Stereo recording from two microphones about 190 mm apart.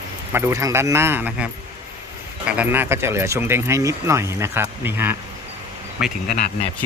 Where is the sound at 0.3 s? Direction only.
15° right (ahead or behind).